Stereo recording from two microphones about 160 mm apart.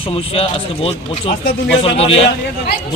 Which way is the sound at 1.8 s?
35° left (ahead or behind).